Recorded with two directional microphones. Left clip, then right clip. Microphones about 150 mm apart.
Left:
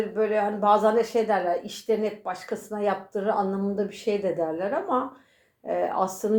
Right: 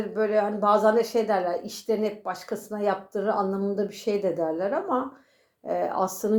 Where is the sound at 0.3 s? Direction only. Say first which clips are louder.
Even; 30° right (ahead or behind).